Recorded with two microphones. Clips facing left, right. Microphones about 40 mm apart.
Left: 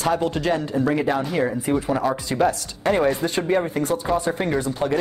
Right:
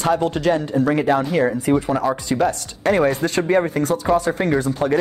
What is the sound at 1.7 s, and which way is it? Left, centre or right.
Speech, right.